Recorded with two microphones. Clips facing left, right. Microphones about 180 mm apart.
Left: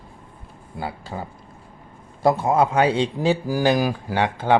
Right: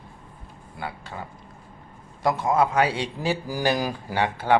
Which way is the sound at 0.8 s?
30° left (ahead or behind).